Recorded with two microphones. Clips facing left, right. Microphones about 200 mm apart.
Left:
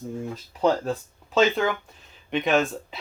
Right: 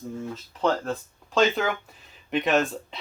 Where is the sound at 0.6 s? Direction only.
5° left (ahead or behind).